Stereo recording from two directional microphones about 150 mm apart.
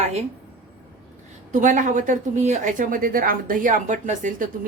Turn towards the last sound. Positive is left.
turn(degrees=-60)  # may be behind; listen again after turning